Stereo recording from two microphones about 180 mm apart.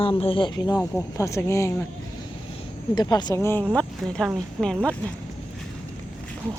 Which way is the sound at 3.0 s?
25° left (ahead or behind).